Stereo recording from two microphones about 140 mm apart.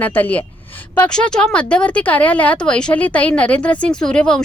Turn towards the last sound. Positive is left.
turn(degrees=5)  # may be behind; listen again after turning